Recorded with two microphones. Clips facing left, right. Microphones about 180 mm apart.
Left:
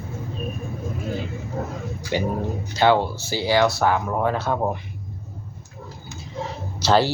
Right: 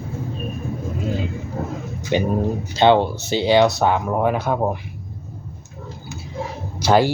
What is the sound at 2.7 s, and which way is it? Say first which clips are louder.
Speech: right 3 dB; 20° right (ahead or behind).